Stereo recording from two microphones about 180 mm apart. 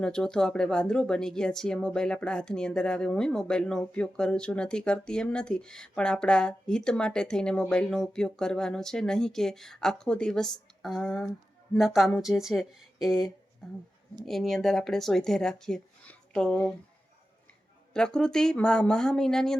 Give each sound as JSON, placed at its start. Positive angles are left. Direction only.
{"t": 0.0, "sound": "speech", "side_deg": 5}
{"t": 14.3, "sound": "speech", "side_deg": 0}
{"t": 17.9, "sound": "speech", "side_deg": 5}